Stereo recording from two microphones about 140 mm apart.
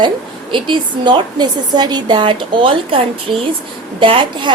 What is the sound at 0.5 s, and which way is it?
A woman's voice, 35° right (ahead or behind).